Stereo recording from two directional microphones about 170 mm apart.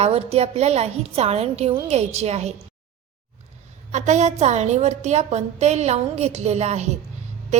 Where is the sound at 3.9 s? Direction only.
45° right (ahead or behind).